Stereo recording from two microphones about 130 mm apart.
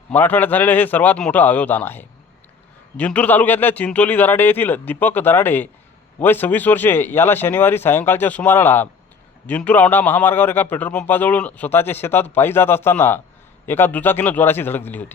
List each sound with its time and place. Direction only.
0.1 s a man's voice: 15° left (ahead or behind)